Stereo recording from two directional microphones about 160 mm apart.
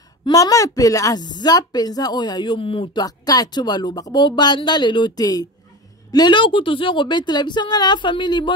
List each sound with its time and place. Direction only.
0.2 s a woman's voice: 20° left (ahead or behind)